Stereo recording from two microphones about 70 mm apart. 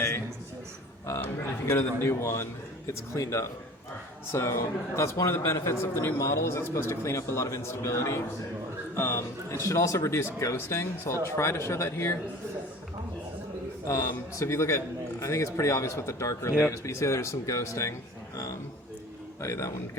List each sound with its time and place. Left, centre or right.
1.6 s a man's voice: left
13.8 s speech: left
19.4 s a man's voice: left